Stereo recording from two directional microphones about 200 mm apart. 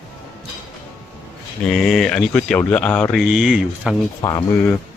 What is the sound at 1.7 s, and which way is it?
Speech, centre (ahead or behind).